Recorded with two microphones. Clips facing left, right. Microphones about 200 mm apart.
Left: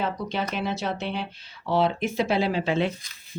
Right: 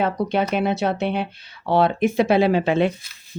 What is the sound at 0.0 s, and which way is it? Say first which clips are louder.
Speech: right 7 dB; 60° right (ahead or behind).